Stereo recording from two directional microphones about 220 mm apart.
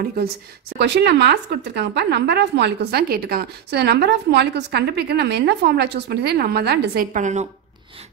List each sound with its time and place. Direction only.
0.0 s speech: 45° right (ahead or behind)
7.2 s speech: 35° right (ahead or behind)